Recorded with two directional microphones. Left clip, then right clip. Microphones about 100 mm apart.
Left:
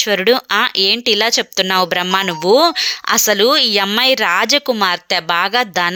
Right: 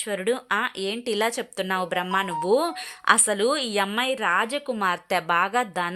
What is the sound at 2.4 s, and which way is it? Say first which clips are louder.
Speech: left 15 dB; 30° left (ahead or behind).